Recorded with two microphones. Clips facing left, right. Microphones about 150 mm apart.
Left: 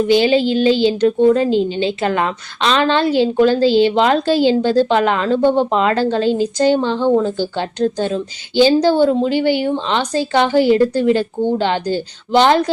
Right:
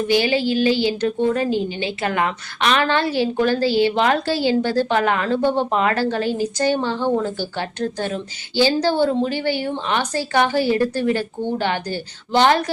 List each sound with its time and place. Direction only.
0.1 s a woman's voice: 20° left (ahead or behind)